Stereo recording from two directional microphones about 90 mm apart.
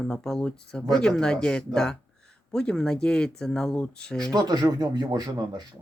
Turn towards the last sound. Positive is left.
turn(degrees=-50)  # may be behind; listen again after turning